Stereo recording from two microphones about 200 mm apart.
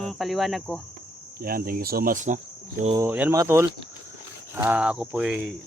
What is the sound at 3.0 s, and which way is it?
Speech, 10° right (ahead or behind).